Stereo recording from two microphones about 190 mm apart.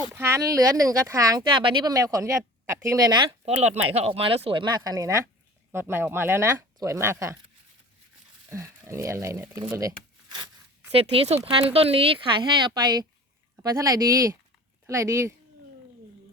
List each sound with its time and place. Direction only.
0.1 s speech: 15° right (ahead or behind)
3.4 s speech: 35° right (ahead or behind); by 7.3 s 15° right (ahead or behind)
8.4 s speech: 15° right (ahead or behind)